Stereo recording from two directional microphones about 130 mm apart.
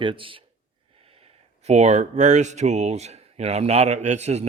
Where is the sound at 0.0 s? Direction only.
40° right (ahead or behind).